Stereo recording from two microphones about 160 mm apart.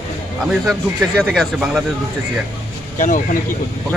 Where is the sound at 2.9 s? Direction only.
55° left (ahead or behind).